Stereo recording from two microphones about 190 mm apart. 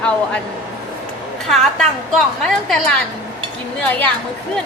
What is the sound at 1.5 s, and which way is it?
A woman's voice, centre (ahead or behind).